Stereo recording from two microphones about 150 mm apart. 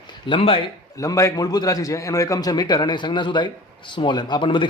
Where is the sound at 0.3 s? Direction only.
40° left (ahead or behind).